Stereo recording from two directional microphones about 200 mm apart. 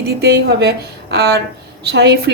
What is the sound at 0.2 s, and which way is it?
A woman's voice, 55° right (ahead or behind).